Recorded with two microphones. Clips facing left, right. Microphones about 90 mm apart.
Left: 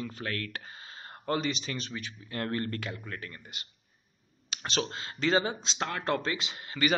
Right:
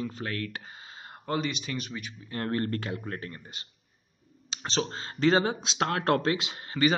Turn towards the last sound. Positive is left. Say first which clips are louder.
# right 4 dB
turn(degrees=-30)  # may be behind; listen again after turning